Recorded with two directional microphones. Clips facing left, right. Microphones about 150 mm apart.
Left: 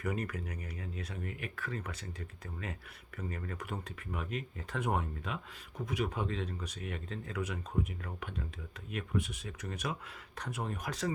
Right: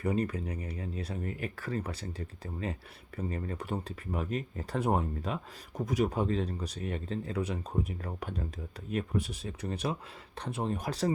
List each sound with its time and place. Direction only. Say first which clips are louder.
0.0 s speech: right 6 dB; 30° right (ahead or behind)